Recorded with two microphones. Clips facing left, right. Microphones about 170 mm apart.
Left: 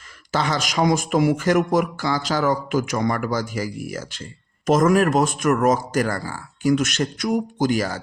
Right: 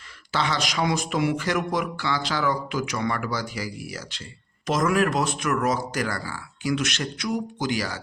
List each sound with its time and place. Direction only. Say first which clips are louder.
0.3 s a man's voice: left 4 dB; 45° left (ahead or behind)